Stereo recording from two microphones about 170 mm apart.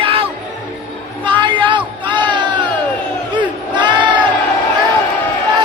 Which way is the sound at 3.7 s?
25° right (ahead or behind).